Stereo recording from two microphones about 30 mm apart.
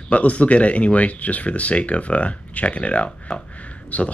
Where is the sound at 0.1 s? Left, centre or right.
Left.